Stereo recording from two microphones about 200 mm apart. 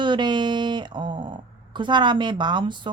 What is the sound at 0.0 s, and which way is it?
Speech, 20° right (ahead or behind).